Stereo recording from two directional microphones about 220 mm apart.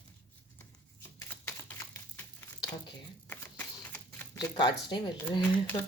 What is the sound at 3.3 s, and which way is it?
Camera, 10° left (ahead or behind).